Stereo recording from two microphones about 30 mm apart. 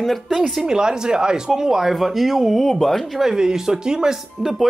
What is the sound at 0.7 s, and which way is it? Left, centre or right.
Speech, right.